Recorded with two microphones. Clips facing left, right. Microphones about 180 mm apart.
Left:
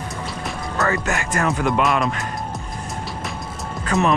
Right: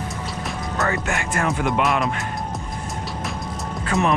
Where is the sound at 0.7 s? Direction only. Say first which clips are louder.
Left 2 dB; 20° right (ahead or behind).